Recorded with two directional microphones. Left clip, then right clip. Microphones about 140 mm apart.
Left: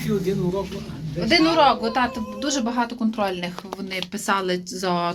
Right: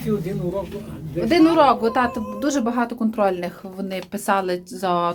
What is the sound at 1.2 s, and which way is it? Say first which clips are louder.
Speech: right 2 dB; 50° right (ahead or behind).